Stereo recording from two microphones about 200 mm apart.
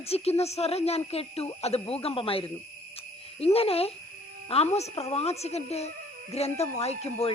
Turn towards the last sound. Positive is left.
turn(degrees=30)  # may be behind; listen again after turning